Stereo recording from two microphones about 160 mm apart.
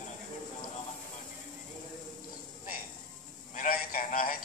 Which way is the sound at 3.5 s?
55° left (ahead or behind).